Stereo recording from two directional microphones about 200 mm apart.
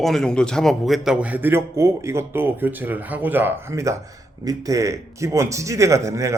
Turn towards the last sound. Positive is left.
turn(degrees=-15)  # may be behind; listen again after turning